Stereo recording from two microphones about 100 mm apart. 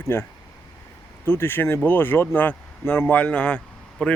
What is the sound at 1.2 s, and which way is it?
Speech, 20° left (ahead or behind).